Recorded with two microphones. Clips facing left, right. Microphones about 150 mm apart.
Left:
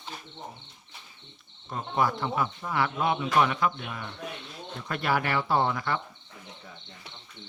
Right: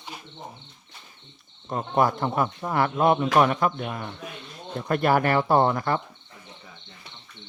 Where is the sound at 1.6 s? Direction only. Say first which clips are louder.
Right 5 dB; 45° right (ahead or behind).